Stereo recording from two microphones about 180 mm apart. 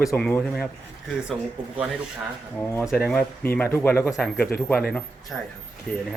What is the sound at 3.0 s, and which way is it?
Speech, 5° left (ahead or behind).